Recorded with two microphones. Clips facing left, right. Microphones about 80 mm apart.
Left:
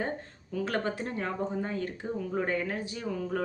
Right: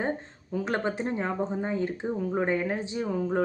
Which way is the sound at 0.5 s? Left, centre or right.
Right.